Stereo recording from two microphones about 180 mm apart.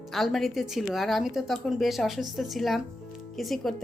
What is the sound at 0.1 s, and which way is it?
A woman's voice, centre (ahead or behind).